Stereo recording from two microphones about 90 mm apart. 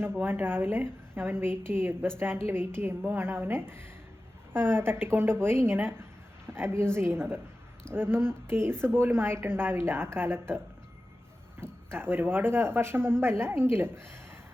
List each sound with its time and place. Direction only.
0.2 s a woman's voice: 25° right (ahead or behind)
11.6 s a woman's voice: 25° right (ahead or behind)